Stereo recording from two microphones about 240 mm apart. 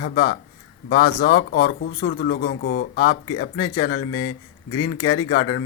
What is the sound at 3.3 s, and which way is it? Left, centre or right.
Speech, centre.